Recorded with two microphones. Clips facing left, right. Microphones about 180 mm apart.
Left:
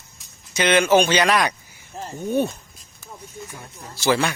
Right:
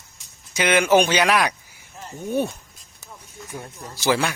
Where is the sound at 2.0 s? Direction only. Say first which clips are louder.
Left 6 dB; 35° left (ahead or behind).